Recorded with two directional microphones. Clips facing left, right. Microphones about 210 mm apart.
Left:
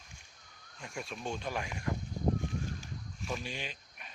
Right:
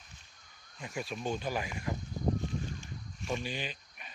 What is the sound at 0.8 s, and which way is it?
Speech, centre (ahead or behind).